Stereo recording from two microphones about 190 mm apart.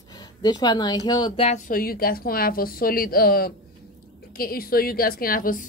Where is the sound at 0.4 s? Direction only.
20° left (ahead or behind).